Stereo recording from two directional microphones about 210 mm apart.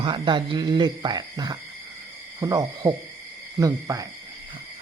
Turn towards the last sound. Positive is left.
turn(degrees=-15)  # may be behind; listen again after turning